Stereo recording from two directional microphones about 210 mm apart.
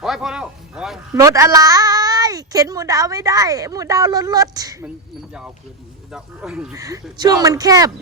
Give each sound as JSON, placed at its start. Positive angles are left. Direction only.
{"t": 0.0, "sound": "speech", "side_deg": 0}
{"t": 1.1, "sound": "a woman's voice", "side_deg": -15}
{"t": 6.1, "sound": "speech", "side_deg": -5}
{"t": 6.7, "sound": "a woman's voice", "side_deg": -15}